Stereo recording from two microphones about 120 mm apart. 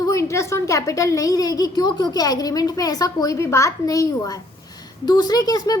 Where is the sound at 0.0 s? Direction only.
25° left (ahead or behind).